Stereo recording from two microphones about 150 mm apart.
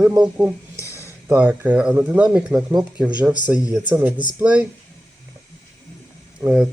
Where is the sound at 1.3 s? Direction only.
10° right (ahead or behind).